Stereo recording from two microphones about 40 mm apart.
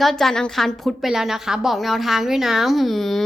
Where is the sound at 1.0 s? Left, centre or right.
Centre.